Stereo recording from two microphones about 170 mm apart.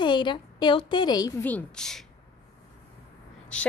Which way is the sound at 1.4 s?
10° left (ahead or behind).